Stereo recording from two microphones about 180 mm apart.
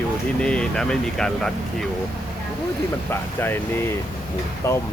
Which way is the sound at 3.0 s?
10° left (ahead or behind).